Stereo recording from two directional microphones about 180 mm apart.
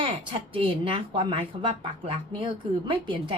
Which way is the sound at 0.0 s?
30° right (ahead or behind).